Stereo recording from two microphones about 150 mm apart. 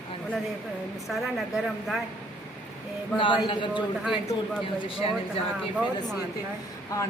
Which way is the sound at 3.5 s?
30° left (ahead or behind).